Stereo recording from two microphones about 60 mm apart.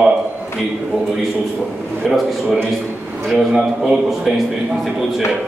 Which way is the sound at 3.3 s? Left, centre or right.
Centre.